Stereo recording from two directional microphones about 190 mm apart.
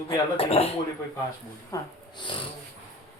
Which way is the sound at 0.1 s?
30° left (ahead or behind).